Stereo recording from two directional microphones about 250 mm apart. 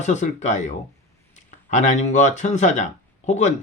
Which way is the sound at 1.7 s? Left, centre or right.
Left.